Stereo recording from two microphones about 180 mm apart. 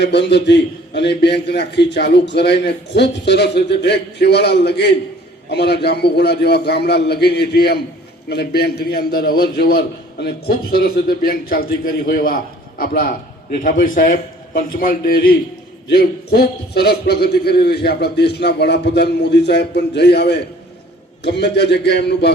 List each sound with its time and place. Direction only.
0.0 s a man's voice: 70° left (ahead or behind)